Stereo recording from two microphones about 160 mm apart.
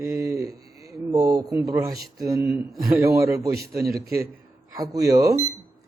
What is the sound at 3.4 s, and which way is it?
Speech, 75° right (ahead or behind).